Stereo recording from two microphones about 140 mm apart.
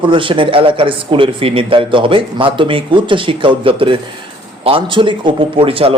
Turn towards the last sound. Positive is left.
turn(degrees=-40)  # may be behind; listen again after turning